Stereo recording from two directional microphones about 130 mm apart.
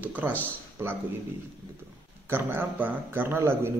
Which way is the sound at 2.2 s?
15° right (ahead or behind).